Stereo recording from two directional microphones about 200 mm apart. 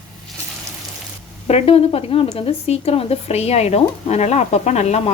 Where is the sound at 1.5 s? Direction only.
30° left (ahead or behind).